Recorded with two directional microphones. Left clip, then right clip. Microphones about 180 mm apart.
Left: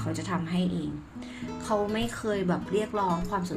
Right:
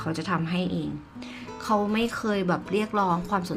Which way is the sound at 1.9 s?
20° right (ahead or behind).